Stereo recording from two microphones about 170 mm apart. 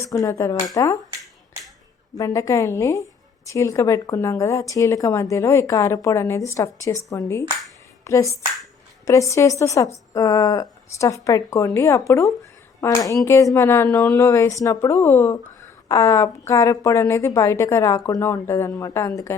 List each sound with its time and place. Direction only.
0.0 s a woman's voice: 20° left (ahead or behind)
2.1 s a woman's voice: 20° left (ahead or behind)